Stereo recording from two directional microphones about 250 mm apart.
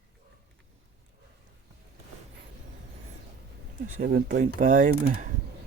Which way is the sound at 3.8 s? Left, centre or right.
Right.